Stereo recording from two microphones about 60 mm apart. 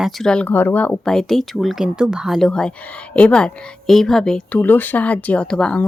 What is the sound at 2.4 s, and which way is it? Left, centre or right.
Speech, centre.